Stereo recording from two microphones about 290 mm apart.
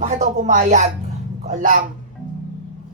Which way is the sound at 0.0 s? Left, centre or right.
Right.